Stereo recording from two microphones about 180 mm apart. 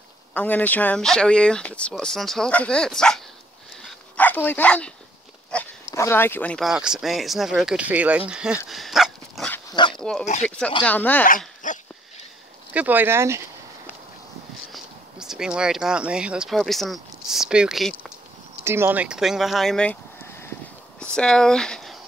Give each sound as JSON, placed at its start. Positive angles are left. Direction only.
{"t": 0.3, "sound": "speech", "side_deg": 10}
{"t": 3.8, "sound": "dog", "side_deg": 10}
{"t": 5.9, "sound": "speech", "side_deg": 15}
{"t": 8.6, "sound": "dog", "side_deg": 0}
{"t": 9.7, "sound": "dog", "side_deg": 25}
{"t": 9.9, "sound": "speech", "side_deg": 5}
{"t": 11.2, "sound": "dog", "side_deg": 45}
{"t": 12.7, "sound": "speech", "side_deg": -10}
{"t": 14.7, "sound": "speech", "side_deg": -5}
{"t": 18.6, "sound": "speech", "side_deg": -15}